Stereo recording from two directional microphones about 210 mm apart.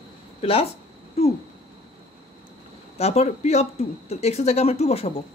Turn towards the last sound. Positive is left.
turn(degrees=30)  # may be behind; listen again after turning